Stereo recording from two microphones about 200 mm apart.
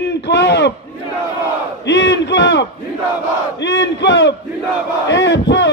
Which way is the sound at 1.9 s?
60° left (ahead or behind).